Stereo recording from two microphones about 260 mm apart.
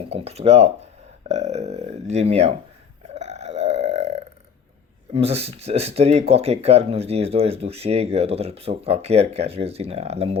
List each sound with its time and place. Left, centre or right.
0.1 s speech: right
3.2 s burping: right
5.1 s speech: right